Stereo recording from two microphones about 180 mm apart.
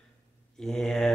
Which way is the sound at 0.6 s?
5° left (ahead or behind).